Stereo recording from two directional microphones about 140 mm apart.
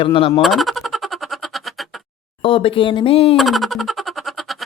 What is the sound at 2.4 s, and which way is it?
Speech, 40° left (ahead or behind).